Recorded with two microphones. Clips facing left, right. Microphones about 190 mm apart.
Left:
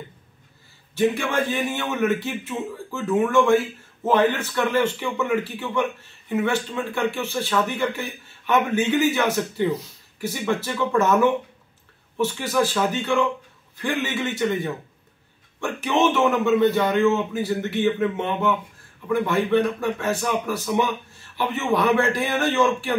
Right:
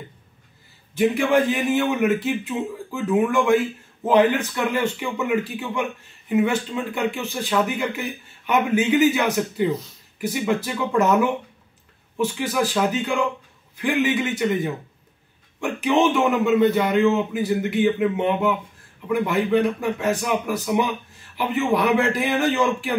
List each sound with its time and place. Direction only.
1.3 s speech: 15° right (ahead or behind)
12.2 s speech: 10° right (ahead or behind)